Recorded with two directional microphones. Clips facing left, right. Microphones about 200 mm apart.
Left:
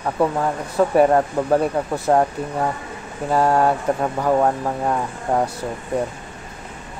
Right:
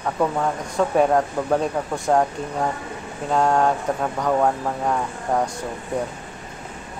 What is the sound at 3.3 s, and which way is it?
Speech, 5° left (ahead or behind).